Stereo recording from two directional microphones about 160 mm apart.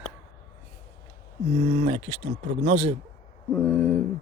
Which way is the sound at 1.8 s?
40° right (ahead or behind).